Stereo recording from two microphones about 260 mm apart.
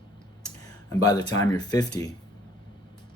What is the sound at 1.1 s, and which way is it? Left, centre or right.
Speech, centre.